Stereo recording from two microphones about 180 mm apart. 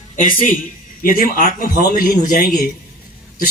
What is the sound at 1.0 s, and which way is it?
A man's voice, 50° left (ahead or behind).